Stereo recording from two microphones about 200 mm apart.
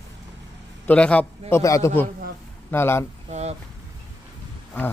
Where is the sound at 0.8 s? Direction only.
5° left (ahead or behind).